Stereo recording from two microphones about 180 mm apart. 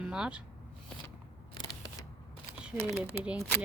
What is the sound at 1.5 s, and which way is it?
Single-lens reflex camera, 25° left (ahead or behind).